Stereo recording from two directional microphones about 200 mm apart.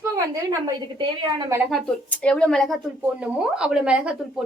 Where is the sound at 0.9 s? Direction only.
20° right (ahead or behind).